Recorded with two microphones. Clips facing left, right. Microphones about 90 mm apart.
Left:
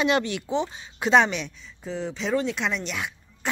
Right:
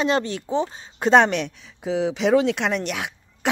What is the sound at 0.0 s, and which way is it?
A woman's voice, 35° right (ahead or behind).